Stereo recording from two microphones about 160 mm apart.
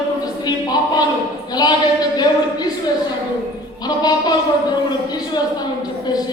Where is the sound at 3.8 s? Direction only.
25° left (ahead or behind).